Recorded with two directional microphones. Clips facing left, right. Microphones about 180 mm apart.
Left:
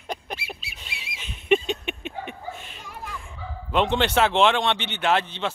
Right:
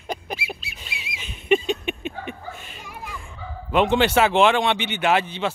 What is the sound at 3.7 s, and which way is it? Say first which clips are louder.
Speech: right 3 dB; 5° right (ahead or behind).